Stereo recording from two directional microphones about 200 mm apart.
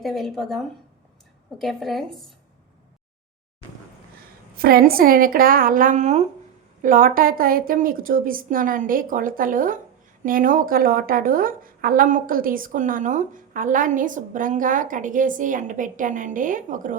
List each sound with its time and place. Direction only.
0.0 s speech: centre (ahead or behind)
4.5 s a woman's voice: 50° right (ahead or behind)